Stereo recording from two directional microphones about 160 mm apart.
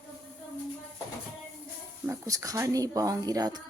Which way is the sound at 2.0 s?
20° right (ahead or behind).